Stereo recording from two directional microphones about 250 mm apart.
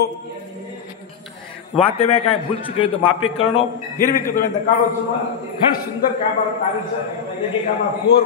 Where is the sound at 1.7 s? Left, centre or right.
Left.